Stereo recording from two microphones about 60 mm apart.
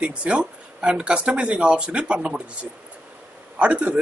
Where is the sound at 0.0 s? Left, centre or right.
Right.